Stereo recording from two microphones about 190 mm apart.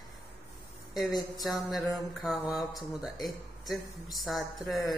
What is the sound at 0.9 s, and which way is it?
Speech, centre (ahead or behind).